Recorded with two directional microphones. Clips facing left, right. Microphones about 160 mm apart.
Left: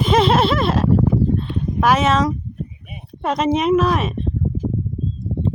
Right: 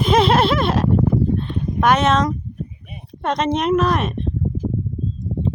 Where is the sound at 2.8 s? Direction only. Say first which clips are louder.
Left 1 dB; 5° left (ahead or behind).